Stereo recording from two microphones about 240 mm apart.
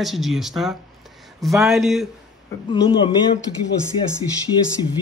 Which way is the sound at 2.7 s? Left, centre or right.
Left.